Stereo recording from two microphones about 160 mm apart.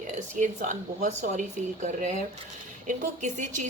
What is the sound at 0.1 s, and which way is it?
A woman's voice, 50° right (ahead or behind).